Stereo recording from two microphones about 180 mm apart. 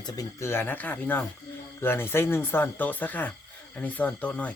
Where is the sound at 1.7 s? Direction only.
10° left (ahead or behind).